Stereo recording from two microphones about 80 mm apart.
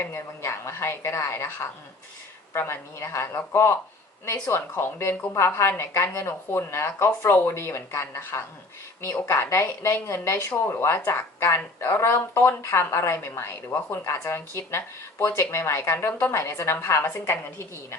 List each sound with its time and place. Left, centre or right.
0.0 s speech: left